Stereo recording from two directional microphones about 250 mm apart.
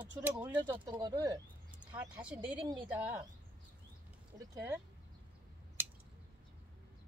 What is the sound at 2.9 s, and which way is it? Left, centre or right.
Speech, centre.